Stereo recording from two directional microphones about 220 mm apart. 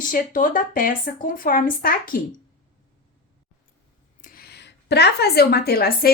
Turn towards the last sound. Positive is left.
turn(degrees=45)  # may be behind; listen again after turning